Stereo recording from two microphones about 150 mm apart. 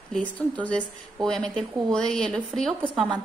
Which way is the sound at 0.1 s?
10° left (ahead or behind).